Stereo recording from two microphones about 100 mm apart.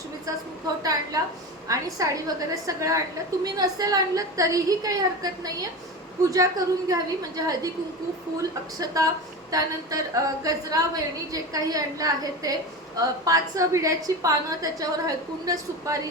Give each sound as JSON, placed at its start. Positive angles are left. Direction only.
{"t": 0.8, "sound": "a woman's voice", "side_deg": -40}